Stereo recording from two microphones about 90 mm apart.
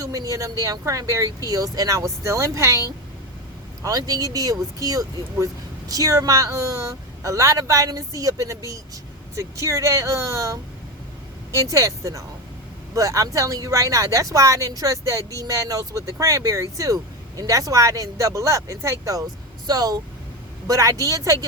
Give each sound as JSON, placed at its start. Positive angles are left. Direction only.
{"t": 0.0, "sound": "speech", "side_deg": -40}
{"t": 3.8, "sound": "speech", "side_deg": -45}
{"t": 19.6, "sound": "speech", "side_deg": -45}